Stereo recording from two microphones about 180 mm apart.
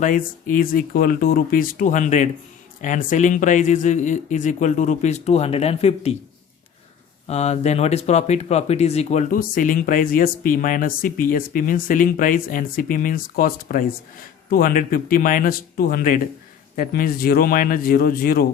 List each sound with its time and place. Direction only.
0.0 s speech: 50° left (ahead or behind)
7.3 s speech: 35° left (ahead or behind); by 18.4 s 55° left (ahead or behind)